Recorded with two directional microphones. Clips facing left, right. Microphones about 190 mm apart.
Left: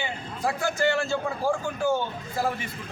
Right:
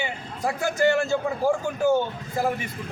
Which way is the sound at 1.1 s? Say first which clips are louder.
Right 3 dB; 20° right (ahead or behind).